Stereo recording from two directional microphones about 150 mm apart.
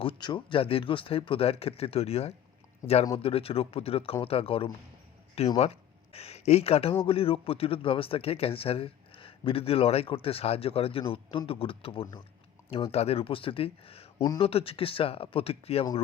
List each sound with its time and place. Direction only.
0.0 s speech: 35° left (ahead or behind)